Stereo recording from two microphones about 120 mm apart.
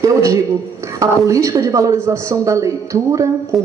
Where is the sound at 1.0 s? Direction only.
25° right (ahead or behind).